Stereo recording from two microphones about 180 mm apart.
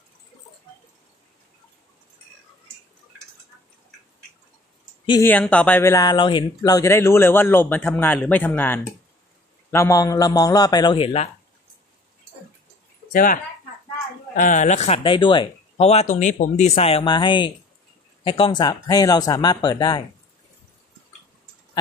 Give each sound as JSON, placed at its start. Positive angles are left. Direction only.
{"t": 5.2, "sound": "speech", "side_deg": 10}
{"t": 13.1, "sound": "speech", "side_deg": 50}